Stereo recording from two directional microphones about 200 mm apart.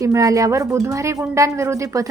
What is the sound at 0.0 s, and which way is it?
Speech, 15° right (ahead or behind).